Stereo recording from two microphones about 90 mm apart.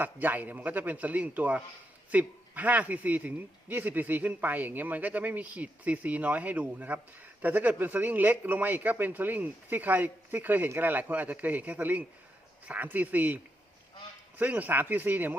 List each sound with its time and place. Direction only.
0.0 s a man's voice: 20° right (ahead or behind)